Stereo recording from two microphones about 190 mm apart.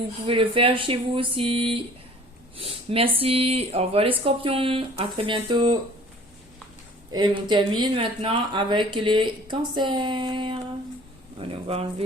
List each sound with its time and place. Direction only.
0.3 s speech: 25° right (ahead or behind)
7.1 s speech: 25° right (ahead or behind)